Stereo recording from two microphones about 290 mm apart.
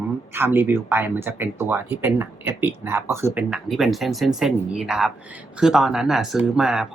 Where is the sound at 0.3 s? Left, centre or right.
Centre.